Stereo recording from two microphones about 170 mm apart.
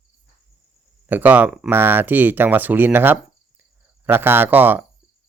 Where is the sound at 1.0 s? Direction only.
10° right (ahead or behind).